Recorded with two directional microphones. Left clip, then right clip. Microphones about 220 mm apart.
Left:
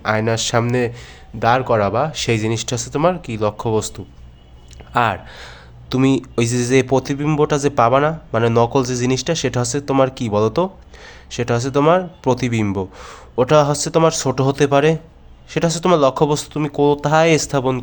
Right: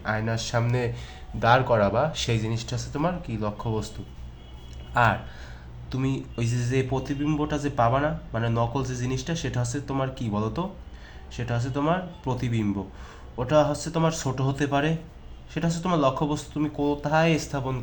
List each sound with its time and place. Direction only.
0.0 s speech: 45° left (ahead or behind)